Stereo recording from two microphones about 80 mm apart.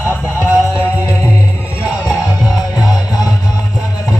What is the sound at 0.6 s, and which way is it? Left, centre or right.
Music, left.